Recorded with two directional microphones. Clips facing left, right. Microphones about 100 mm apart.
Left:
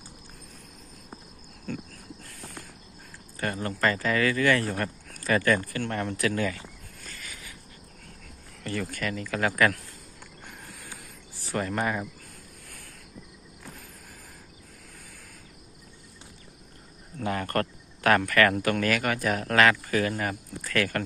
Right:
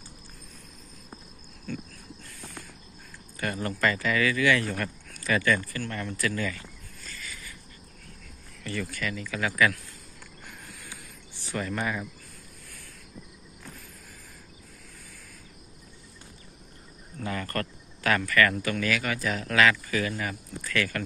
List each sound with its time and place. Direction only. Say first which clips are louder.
1.7 s cricket: left 1 dB; 45° left (ahead or behind)
3.3 s speech: even; 30° left (ahead or behind)
4.6 s speech: left 2 dB; 30° left (ahead or behind)
5.1 s speech: left 2 dB; 45° left (ahead or behind)
7.0 s cricket: right 1 dB; 60° left (ahead or behind)
8.6 s speech: left 2 dB; 45° left (ahead or behind)
11.4 s speech: left 2 dB; 40° left (ahead or behind)
17.2 s speech: left 4 dB; 60° left (ahead or behind)